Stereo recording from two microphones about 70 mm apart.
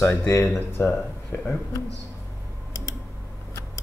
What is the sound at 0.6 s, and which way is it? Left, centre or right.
Speech, left.